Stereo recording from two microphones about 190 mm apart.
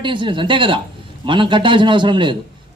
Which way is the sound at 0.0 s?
25° right (ahead or behind).